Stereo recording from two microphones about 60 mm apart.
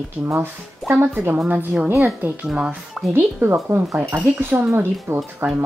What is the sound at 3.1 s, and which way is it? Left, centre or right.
Speech, right.